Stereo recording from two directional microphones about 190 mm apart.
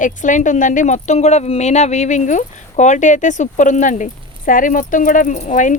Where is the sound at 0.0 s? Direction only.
40° left (ahead or behind).